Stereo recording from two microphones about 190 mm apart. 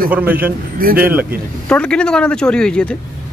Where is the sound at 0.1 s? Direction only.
10° right (ahead or behind).